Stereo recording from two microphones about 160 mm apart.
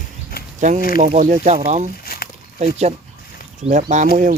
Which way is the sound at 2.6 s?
40° right (ahead or behind).